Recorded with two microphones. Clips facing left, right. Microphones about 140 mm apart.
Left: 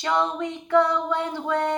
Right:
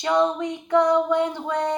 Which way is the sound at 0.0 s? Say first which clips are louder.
Right 3 dB; 20° right (ahead or behind).